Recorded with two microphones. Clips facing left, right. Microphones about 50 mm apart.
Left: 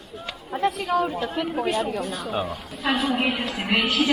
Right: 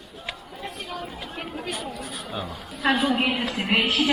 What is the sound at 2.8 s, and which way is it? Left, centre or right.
Speech, centre.